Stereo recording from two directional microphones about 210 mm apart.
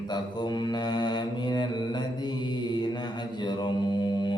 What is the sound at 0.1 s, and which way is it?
Mantra, 20° left (ahead or behind).